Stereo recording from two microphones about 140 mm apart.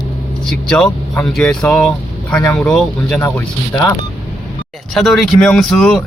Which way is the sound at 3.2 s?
20° left (ahead or behind).